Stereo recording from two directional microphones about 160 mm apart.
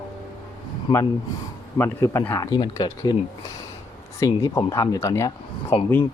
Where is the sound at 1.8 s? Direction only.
15° left (ahead or behind).